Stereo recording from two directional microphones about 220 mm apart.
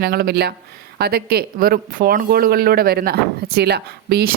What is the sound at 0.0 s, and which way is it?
Speech, 45° right (ahead or behind).